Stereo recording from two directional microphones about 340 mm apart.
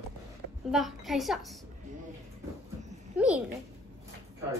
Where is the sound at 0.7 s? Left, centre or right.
Centre.